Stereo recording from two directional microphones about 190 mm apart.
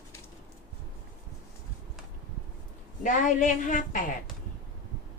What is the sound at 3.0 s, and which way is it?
A woman's voice, 40° left (ahead or behind).